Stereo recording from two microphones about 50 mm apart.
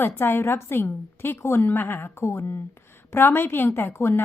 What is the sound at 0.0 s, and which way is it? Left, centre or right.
A woman's voice, left.